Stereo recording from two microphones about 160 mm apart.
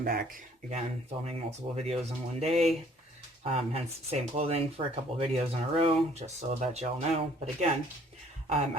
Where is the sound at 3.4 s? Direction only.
40° right (ahead or behind).